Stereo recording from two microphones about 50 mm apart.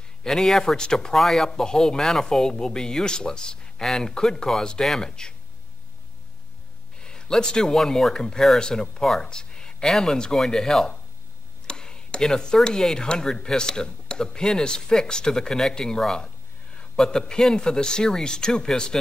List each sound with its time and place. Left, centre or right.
0.3 s speech: centre
7.0 s speech: centre
11.6 s a sound: centre
12.6 s speech: centre